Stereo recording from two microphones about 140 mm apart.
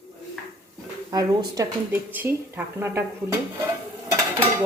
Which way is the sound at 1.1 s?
25° right (ahead or behind).